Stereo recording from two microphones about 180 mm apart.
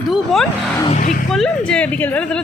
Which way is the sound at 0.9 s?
45° left (ahead or behind).